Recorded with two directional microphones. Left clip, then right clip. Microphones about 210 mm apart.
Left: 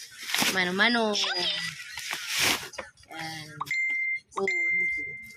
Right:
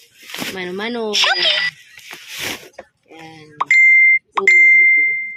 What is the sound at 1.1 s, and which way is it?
Speech, 40° right (ahead or behind).